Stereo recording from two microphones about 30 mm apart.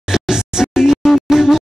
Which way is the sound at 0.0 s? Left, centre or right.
Centre.